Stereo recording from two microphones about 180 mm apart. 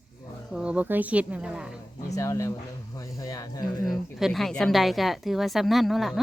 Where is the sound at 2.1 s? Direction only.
15° left (ahead or behind).